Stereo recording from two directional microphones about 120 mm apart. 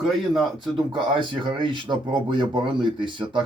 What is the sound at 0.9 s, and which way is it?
Speech, 40° right (ahead or behind).